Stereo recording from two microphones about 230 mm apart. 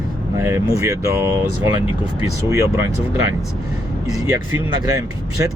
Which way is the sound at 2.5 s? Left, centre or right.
Centre.